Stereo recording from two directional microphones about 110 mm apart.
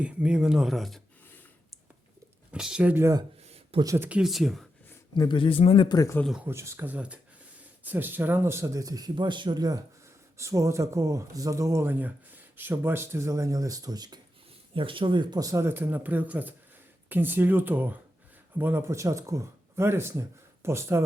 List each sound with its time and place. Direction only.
0.0 s speech: 10° right (ahead or behind)
2.5 s speech: 5° right (ahead or behind)
2.9 s speech: 25° right (ahead or behind)
4.1 s speech: 5° right (ahead or behind)
5.1 s speech: 45° left (ahead or behind)
6.4 s speech: 25° right (ahead or behind)
14.8 s speech: 50° right (ahead or behind); by 21.0 s 25° right (ahead or behind)